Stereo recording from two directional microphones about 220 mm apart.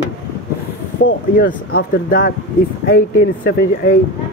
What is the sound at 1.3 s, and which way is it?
Speech, 40° left (ahead or behind).